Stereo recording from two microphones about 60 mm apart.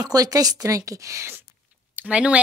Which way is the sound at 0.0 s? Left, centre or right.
Right.